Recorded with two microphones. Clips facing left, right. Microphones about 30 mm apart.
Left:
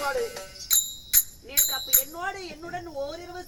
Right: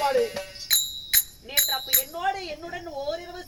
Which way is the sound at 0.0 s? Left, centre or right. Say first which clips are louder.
Right 5 dB; right.